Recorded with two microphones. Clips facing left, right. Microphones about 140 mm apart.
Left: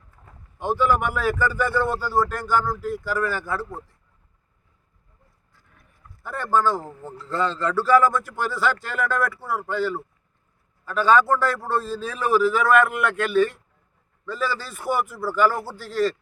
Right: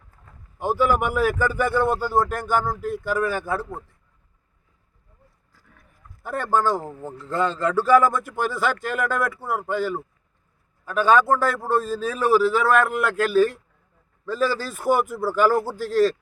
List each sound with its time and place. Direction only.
0.6 s a man's voice: 10° right (ahead or behind)
2.4 s speech: 50° right (ahead or behind)
2.7 s speech: 20° right (ahead or behind)
6.2 s a man's voice: 15° right (ahead or behind)
12.1 s speech: 35° right (ahead or behind)